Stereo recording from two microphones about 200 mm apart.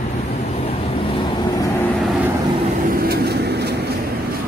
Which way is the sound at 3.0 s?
50° right (ahead or behind).